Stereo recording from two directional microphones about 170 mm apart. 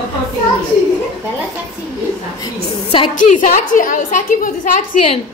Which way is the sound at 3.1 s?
50° left (ahead or behind).